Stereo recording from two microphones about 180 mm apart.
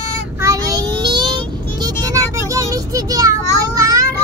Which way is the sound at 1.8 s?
20° right (ahead or behind).